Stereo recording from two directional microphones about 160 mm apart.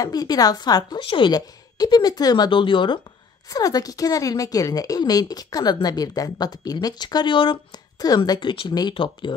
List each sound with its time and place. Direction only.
0.0 s speech: 25° left (ahead or behind)